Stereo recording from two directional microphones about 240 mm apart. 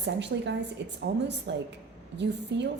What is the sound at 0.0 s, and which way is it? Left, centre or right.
A woman's voice, right.